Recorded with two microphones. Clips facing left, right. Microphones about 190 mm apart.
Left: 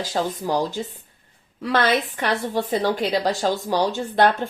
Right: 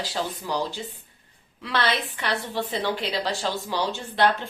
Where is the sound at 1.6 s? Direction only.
45° left (ahead or behind).